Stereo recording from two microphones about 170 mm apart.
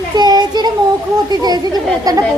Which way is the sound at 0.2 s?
25° right (ahead or behind).